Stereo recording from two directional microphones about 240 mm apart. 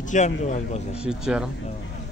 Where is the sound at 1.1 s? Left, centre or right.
Centre.